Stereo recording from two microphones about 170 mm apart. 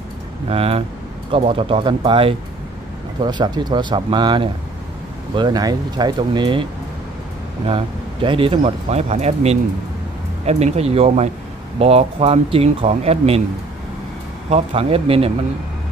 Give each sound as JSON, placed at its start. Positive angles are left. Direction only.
{"t": 0.5, "sound": "speech", "side_deg": -35}
{"t": 14.5, "sound": "speech", "side_deg": -35}